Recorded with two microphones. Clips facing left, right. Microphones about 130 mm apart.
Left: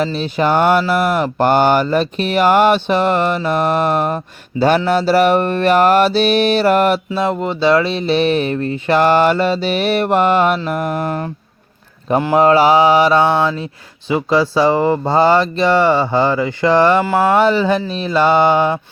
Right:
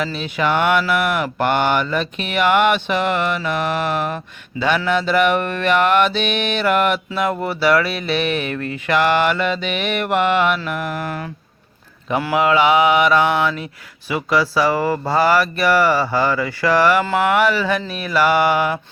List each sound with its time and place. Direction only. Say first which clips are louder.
0.0 s mantra: left 4 dB; 35° left (ahead or behind)
12.3 s mantra: left 4 dB; 40° left (ahead or behind)
14.1 s speech: left 4 dB; 25° left (ahead or behind)